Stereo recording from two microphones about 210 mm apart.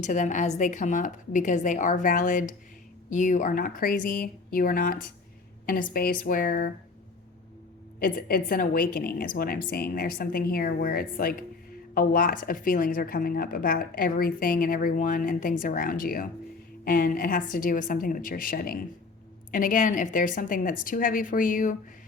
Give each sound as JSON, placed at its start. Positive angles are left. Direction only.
{"t": 0.0, "sound": "a woman's voice", "side_deg": 35}
{"t": 7.9, "sound": "a woman's voice", "side_deg": 45}